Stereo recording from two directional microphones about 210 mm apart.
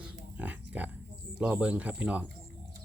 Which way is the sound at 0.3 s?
5° right (ahead or behind).